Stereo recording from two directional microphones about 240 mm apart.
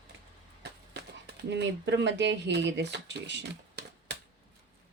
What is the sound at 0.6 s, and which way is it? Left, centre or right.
Speech, right.